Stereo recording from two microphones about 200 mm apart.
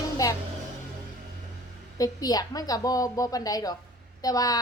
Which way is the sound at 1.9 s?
20° left (ahead or behind).